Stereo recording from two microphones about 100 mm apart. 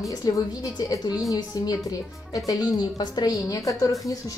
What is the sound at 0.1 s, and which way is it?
Speech, 40° left (ahead or behind).